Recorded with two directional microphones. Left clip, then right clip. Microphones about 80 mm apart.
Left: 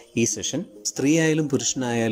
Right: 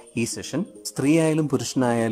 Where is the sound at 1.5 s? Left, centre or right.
Centre.